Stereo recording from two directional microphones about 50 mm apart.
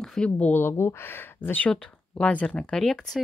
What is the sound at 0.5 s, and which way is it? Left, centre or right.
Speech, left.